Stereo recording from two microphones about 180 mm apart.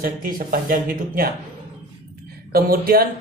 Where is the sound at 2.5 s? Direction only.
55° right (ahead or behind).